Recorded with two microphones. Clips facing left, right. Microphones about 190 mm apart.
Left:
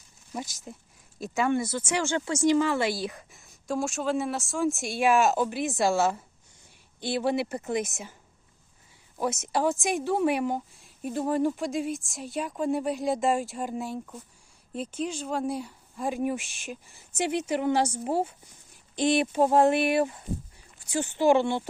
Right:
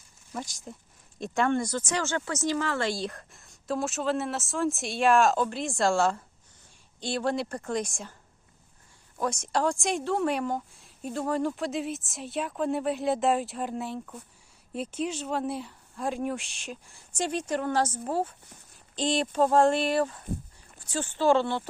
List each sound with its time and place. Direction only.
0.5 s speech: centre (ahead or behind)
9.1 s speech: 10° left (ahead or behind)
11.5 s speech: centre (ahead or behind)